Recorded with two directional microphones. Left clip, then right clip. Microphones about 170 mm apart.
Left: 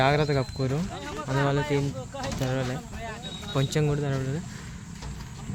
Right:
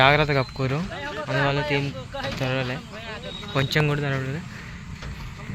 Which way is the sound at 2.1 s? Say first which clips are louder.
Right 6 dB; 90° left.